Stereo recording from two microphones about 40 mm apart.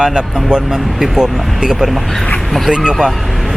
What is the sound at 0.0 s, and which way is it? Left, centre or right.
Speech, right.